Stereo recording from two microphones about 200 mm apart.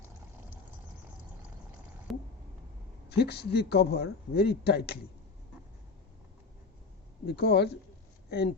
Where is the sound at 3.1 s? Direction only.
55° left (ahead or behind).